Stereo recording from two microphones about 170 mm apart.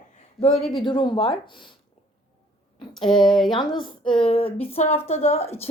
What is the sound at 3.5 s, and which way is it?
Speech, 30° left (ahead or behind).